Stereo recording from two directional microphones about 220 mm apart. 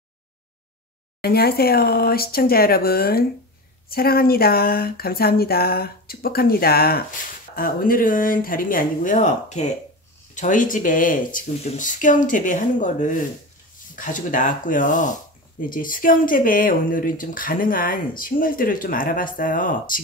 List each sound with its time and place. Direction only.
1.2 s speech: 45° left (ahead or behind)